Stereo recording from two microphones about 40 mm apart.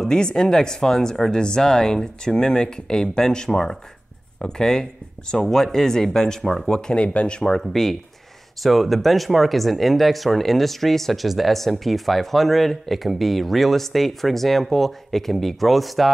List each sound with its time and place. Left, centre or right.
0.0 s speech: centre
7.2 s speech: left
7.4 s speech: centre